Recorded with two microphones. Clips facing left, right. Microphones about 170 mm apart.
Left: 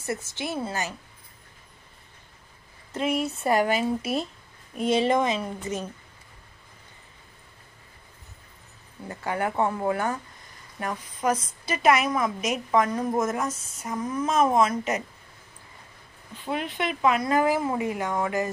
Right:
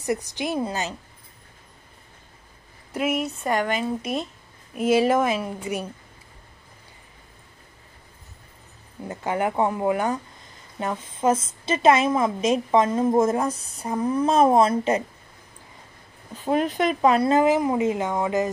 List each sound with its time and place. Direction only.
0.0 s a woman's voice: 15° right (ahead or behind)
2.9 s a woman's voice: 5° right (ahead or behind)
9.0 s a woman's voice: 20° right (ahead or behind)
16.3 s speech: 40° right (ahead or behind)
17.3 s a woman's voice: 20° right (ahead or behind)